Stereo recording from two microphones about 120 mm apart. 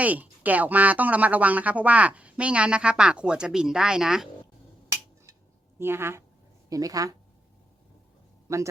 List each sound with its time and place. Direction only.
0.0 s speech: 15° right (ahead or behind)
5.8 s a woman's voice: 20° right (ahead or behind)
8.5 s a woman's voice: 25° right (ahead or behind)